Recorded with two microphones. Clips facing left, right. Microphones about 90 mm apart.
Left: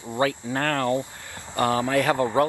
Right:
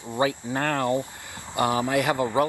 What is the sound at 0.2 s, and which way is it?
Speech, 15° right (ahead or behind).